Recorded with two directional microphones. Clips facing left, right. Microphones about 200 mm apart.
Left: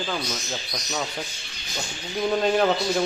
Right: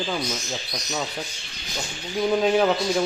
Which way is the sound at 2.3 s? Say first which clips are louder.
Right 1 dB; 5° right (ahead or behind).